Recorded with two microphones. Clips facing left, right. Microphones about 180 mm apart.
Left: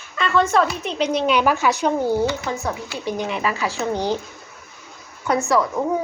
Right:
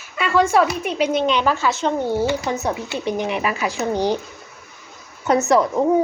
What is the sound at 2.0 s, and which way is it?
Speech, centre (ahead or behind).